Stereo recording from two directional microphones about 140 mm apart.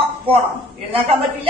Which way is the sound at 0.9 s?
40° right (ahead or behind).